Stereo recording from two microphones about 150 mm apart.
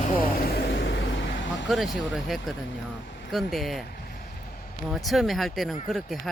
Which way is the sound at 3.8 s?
85° left.